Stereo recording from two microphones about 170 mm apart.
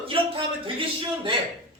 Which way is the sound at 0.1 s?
30° right (ahead or behind).